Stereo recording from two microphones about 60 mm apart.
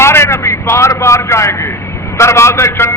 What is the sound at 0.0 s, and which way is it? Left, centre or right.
A man's voice, left.